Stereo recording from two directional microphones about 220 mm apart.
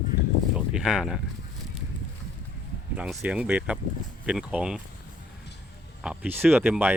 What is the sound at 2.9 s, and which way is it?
Speech, 5° right (ahead or behind).